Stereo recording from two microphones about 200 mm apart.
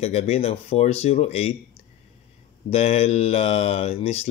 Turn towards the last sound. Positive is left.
turn(degrees=30)  # may be behind; listen again after turning